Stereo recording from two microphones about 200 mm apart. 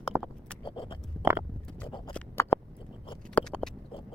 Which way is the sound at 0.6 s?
25° left (ahead or behind).